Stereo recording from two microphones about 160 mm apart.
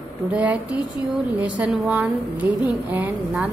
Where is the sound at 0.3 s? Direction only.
10° right (ahead or behind).